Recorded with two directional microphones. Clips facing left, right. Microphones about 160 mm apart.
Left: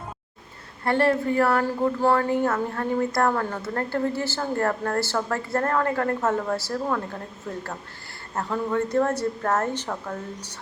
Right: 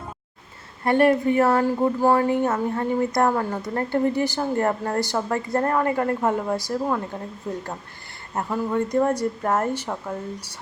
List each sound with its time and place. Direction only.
0.9 s speech: 15° right (ahead or behind)